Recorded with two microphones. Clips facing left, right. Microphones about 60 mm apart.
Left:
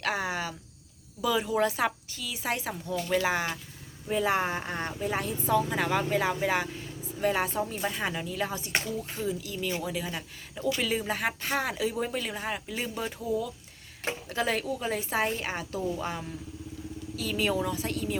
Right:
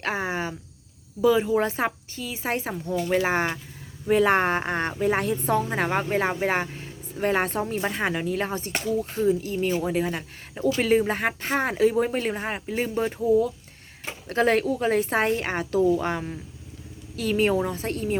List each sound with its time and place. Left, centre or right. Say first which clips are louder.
0.0 s speech: right 3 dB; right
2.9 s speech: right 5 dB; centre
3.2 s speech: right 4 dB; right
4.1 s speech: right 7 dB; right
5.6 s a woman's voice: right 3 dB; right
14.3 s a woman's voice: right 9 dB; right
17.4 s speech: right 4 dB; right